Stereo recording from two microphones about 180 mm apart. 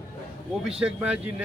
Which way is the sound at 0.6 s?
5° right (ahead or behind).